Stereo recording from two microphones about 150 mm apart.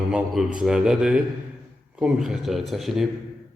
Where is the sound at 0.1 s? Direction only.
5° right (ahead or behind).